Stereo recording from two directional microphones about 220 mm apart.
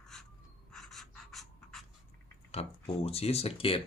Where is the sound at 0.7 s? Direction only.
Centre (ahead or behind).